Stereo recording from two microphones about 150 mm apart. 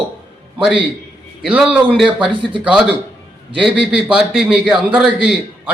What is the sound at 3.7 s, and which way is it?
A man's voice, 5° right (ahead or behind).